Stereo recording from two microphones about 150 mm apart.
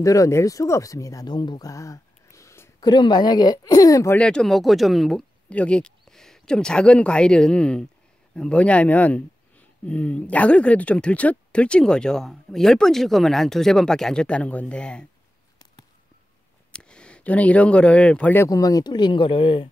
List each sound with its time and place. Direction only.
0.0 s speech: 20° left (ahead or behind)
2.9 s speech: 30° left (ahead or behind)
4.2 s speech: 5° left (ahead or behind)
16.7 s speech: 5° left (ahead or behind); by 19.7 s 35° left (ahead or behind)